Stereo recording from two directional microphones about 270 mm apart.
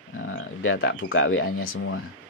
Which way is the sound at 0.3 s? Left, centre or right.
Left.